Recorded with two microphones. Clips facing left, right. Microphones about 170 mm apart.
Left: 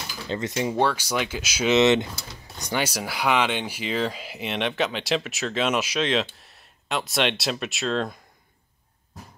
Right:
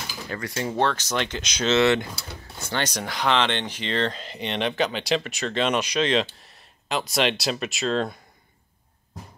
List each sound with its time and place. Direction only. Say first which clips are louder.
0.3 s speech: left 4 dB; 20° left (ahead or behind)
0.7 s speech: even; 10° left (ahead or behind)
1.8 s speech: left 2 dB; 20° left (ahead or behind); by 8.2 s centre (ahead or behind)